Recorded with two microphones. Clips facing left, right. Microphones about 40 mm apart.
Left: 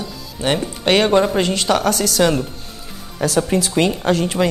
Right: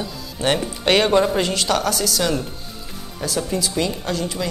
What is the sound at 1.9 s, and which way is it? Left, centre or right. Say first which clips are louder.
Speech: left 5 dB; left.